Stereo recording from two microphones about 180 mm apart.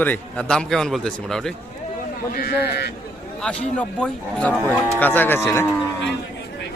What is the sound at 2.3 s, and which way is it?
Speech, 60° left (ahead or behind).